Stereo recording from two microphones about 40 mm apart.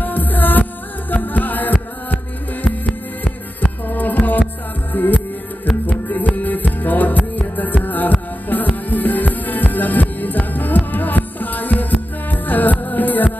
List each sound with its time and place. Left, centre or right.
0.0 s music: left
2.9 s music: left
3.8 s music: left